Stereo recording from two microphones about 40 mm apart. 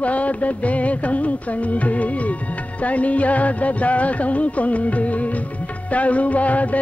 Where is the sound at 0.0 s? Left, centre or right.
Left.